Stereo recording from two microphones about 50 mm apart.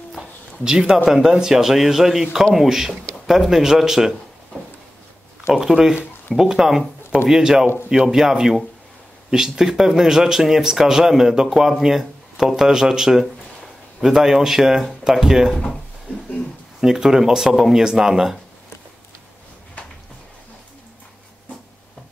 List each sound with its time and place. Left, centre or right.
0.2 s speech: centre
5.5 s speech: centre
15.5 s speech: centre
16.1 s speech: left
16.8 s speech: centre